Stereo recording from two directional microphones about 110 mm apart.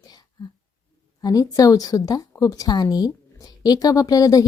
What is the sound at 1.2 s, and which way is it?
A woman's voice, 35° left (ahead or behind).